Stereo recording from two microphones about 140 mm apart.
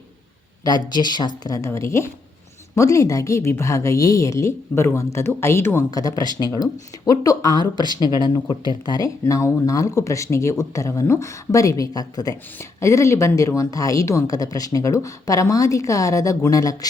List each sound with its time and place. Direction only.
0.6 s speech: 30° left (ahead or behind)